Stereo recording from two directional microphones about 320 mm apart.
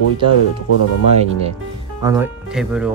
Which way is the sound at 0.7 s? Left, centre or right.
Left.